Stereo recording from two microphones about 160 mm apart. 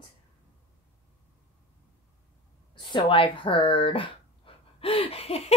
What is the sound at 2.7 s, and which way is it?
Speech, 30° left (ahead or behind).